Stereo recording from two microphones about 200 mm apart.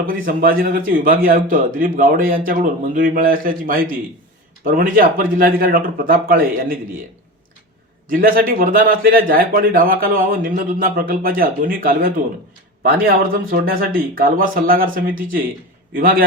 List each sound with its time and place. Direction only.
0.0 s speech: 45° right (ahead or behind)
8.0 s speech: 45° right (ahead or behind)